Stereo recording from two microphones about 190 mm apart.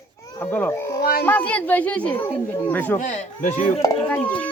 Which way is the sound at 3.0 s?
40° left (ahead or behind).